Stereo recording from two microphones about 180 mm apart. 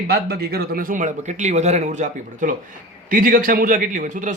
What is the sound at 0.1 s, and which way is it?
A man's voice, 60° right (ahead or behind).